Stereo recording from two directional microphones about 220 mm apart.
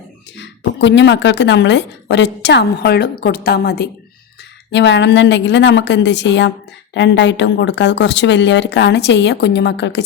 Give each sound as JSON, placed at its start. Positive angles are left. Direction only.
{"t": 0.3, "sound": "a woman's voice", "side_deg": 55}